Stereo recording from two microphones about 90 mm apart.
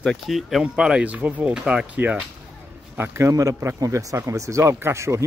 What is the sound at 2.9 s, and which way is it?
A man's voice, 30° right (ahead or behind).